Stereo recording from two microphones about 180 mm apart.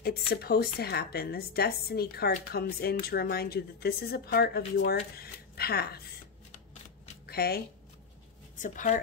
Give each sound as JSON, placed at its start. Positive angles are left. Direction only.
{"t": 0.3, "sound": "a woman's voice", "side_deg": 60}
{"t": 7.2, "sound": "speech", "side_deg": 60}
{"t": 8.5, "sound": "speech", "side_deg": 45}